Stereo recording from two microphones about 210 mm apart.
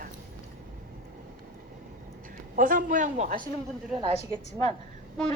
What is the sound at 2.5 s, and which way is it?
Speech, 40° right (ahead or behind).